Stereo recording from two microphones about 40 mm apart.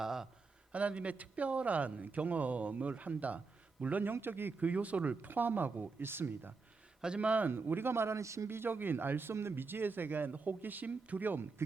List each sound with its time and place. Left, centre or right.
0.0 s a sound: centre
0.7 s a man's voice: right
4.0 s speech: right
4.6 s a man's voice: right
5.3 s speech: right
7.0 s speech: right
7.5 s speech: right